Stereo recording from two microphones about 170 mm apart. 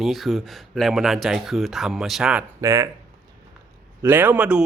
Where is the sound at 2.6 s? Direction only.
15° right (ahead or behind).